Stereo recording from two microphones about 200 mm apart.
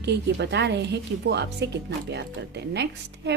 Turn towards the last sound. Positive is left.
turn(degrees=-60)  # may be behind; listen again after turning